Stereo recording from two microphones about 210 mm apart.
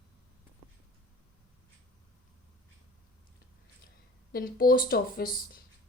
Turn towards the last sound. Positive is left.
turn(degrees=45)  # may be behind; listen again after turning